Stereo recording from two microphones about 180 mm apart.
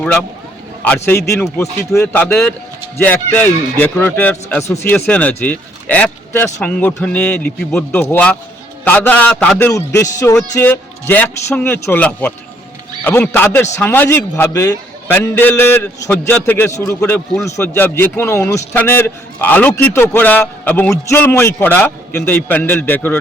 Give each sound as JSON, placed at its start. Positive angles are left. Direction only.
{"t": 0.0, "sound": "a man's voice", "side_deg": 10}
{"t": 9.7, "sound": "a man's voice", "side_deg": 15}